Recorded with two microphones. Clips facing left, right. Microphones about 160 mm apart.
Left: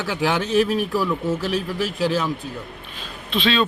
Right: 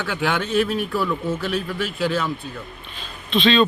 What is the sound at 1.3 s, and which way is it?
Speech, 40° left (ahead or behind).